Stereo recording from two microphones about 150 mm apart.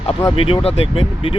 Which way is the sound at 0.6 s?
40° left (ahead or behind).